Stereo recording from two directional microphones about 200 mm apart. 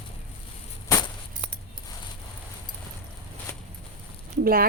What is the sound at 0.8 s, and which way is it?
Keys jangling, 20° left (ahead or behind).